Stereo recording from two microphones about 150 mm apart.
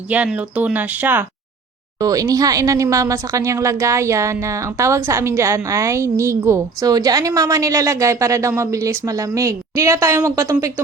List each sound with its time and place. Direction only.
0.1 s speech: 10° right (ahead or behind)
2.0 s speech: 25° right (ahead or behind)